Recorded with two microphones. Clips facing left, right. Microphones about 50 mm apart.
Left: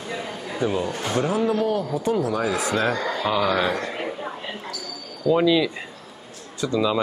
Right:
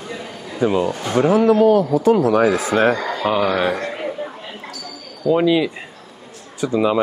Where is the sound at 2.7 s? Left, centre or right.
Right.